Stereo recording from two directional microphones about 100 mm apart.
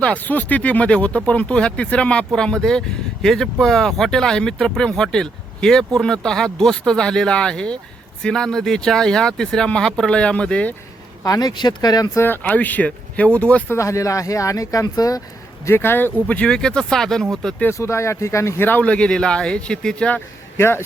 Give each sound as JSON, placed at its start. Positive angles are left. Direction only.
{"t": 0.0, "sound": "speech", "side_deg": 15}
{"t": 11.2, "sound": "speech", "side_deg": 40}
{"t": 12.1, "sound": "speech", "side_deg": 20}
{"t": 13.7, "sound": "speech", "side_deg": 30}
{"t": 15.6, "sound": "speech", "side_deg": 20}
{"t": 16.2, "sound": "speech", "side_deg": 10}
{"t": 17.6, "sound": "speech", "side_deg": 25}